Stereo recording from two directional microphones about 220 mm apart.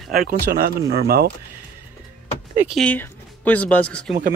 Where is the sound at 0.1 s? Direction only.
45° right (ahead or behind).